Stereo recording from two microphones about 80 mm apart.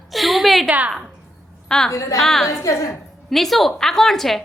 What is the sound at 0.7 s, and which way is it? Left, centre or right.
Speech, centre.